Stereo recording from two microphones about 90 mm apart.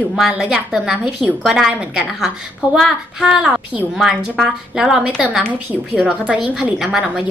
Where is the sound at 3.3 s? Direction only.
15° right (ahead or behind).